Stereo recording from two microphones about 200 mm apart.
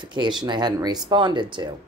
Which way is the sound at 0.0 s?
25° right (ahead or behind).